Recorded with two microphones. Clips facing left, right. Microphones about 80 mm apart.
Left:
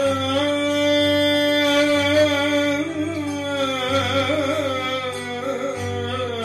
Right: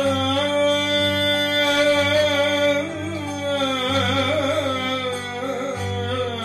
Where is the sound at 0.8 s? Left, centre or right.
Centre.